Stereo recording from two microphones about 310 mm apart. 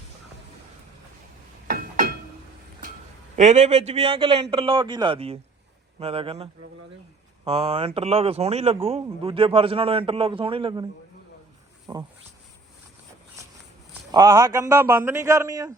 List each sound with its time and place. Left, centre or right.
1.6 s a sound: right
3.3 s a man's voice: right
11.9 s speech: centre
14.1 s speech: centre